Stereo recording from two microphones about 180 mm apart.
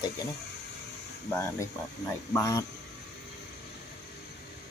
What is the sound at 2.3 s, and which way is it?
Speech, 15° left (ahead or behind).